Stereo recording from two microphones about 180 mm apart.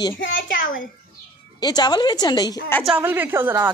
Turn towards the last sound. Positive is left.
turn(degrees=-10)  # may be behind; listen again after turning